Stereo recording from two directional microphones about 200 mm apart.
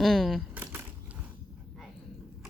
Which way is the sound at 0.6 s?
10° right (ahead or behind).